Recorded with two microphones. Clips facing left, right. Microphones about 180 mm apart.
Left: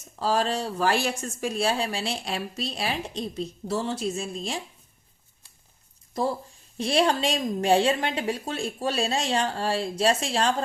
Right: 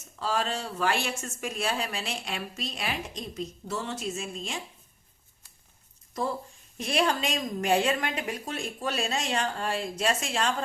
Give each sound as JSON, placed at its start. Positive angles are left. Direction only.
{"t": 0.2, "sound": "speech", "side_deg": 35}
{"t": 6.2, "sound": "speech", "side_deg": 35}